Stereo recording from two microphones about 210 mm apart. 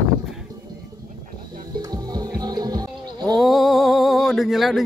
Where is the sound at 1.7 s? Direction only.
20° right (ahead or behind).